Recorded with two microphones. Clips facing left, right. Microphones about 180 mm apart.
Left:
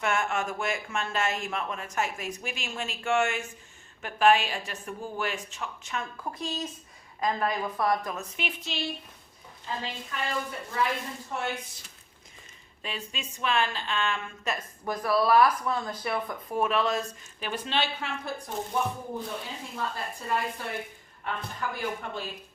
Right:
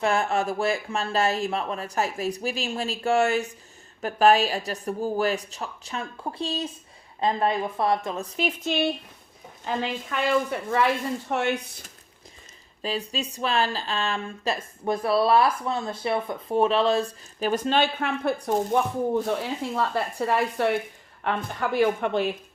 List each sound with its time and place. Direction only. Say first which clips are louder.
0.0 s speech: right 5 dB; 35° right (ahead or behind)
9.6 s a woman's voice: right 7 dB; 80° right
12.8 s speech: right 8 dB; 35° right (ahead or behind); by 18.8 s 60° right (ahead or behind)
19.4 s a woman's voice: right 9 dB; 75° right (ahead or behind)